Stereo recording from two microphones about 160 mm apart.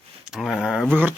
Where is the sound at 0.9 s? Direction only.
10° right (ahead or behind).